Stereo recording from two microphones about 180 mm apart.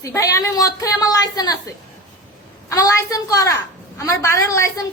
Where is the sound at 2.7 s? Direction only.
20° left (ahead or behind).